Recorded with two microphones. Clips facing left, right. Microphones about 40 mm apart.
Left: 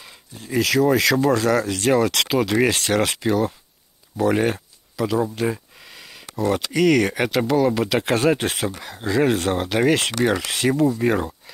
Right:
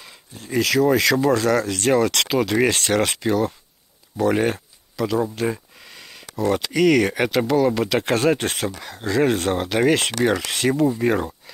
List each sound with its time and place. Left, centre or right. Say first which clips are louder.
0.0 s speech: even; centre
4.2 s a sound: even; centre
6.3 s speech: even; centre